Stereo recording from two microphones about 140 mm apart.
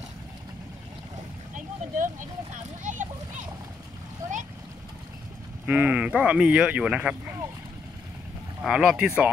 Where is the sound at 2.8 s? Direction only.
65° right (ahead or behind).